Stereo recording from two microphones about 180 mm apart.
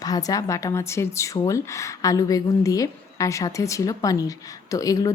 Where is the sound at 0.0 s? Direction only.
20° left (ahead or behind).